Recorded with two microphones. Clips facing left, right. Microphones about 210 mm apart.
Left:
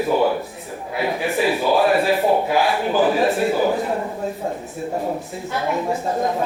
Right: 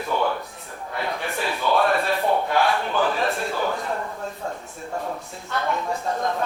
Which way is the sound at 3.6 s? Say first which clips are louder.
Left 6 dB; 15° left (ahead or behind).